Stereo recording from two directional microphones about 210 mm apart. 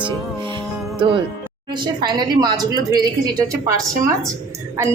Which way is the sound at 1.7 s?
20° right (ahead or behind).